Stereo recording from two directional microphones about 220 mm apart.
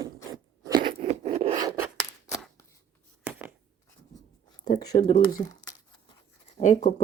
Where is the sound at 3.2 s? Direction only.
5° right (ahead or behind).